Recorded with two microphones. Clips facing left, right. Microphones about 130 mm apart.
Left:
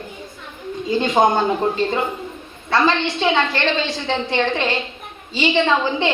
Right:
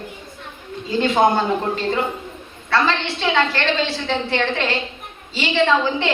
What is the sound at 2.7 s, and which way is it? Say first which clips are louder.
A woman's voice: left 2 dB; 15° left (ahead or behind).